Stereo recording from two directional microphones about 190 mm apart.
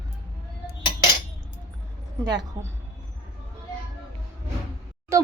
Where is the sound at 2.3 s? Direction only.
20° right (ahead or behind).